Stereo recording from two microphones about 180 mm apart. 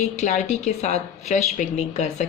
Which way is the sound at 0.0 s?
40° left (ahead or behind).